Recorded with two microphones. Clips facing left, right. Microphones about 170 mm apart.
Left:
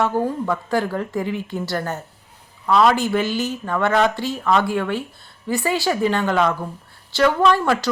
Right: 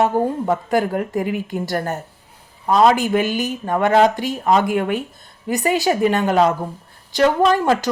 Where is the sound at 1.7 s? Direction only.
45° right (ahead or behind).